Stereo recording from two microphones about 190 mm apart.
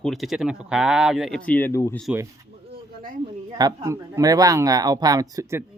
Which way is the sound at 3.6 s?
20° right (ahead or behind).